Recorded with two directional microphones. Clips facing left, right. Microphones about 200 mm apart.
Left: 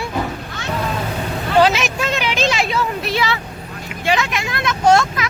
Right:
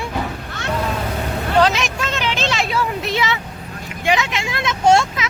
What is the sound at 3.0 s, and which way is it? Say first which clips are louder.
Vehicle: left 1 dB; 20° right (ahead or behind).